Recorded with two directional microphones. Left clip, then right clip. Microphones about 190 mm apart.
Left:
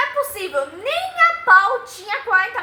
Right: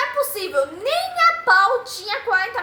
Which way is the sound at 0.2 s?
25° right (ahead or behind).